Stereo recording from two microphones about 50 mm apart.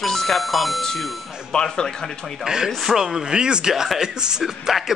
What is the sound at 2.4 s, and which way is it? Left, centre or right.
Speech, centre.